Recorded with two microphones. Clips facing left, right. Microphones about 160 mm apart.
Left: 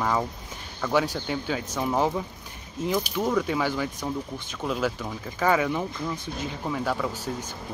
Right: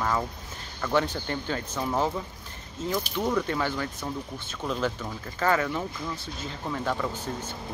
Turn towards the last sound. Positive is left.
turn(degrees=5)  # may be behind; listen again after turning